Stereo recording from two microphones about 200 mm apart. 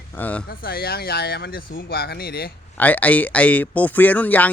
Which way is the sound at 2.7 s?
10° left (ahead or behind).